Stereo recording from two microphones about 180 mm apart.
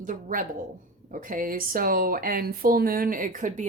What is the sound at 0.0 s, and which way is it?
A woman's voice, 50° right (ahead or behind).